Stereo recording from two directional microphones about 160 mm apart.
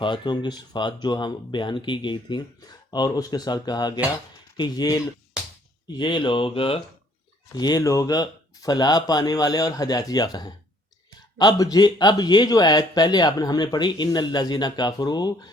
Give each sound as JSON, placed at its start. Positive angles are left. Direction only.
{"t": 0.0, "sound": "speech", "side_deg": 30}
{"t": 6.0, "sound": "mantra", "side_deg": 30}
{"t": 7.5, "sound": "speech", "side_deg": 25}